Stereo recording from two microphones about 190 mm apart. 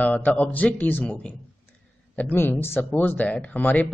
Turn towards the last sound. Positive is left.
turn(degrees=10)  # may be behind; listen again after turning